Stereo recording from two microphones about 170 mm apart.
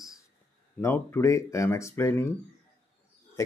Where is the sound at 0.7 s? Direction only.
10° left (ahead or behind).